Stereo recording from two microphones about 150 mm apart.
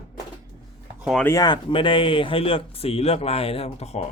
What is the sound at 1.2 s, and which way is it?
Speech, 15° left (ahead or behind).